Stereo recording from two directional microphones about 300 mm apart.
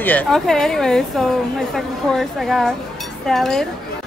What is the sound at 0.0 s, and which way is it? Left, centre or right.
A woman's voice, centre.